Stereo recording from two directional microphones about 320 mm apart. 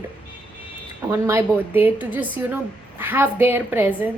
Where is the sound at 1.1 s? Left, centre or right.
Centre.